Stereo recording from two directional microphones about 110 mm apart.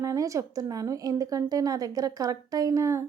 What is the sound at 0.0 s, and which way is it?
Speech, 30° right (ahead or behind).